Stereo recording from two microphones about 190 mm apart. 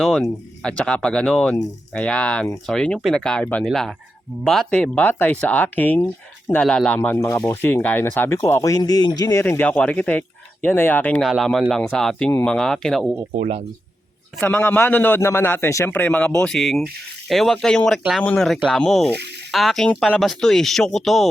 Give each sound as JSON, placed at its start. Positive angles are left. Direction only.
{"t": 0.0, "sound": "speech", "side_deg": 0}
{"t": 14.3, "sound": "speech", "side_deg": 10}
{"t": 19.1, "sound": "speech", "side_deg": -60}
{"t": 19.5, "sound": "speech", "side_deg": 0}